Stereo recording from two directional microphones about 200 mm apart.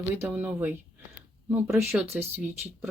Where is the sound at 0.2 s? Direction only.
10° right (ahead or behind).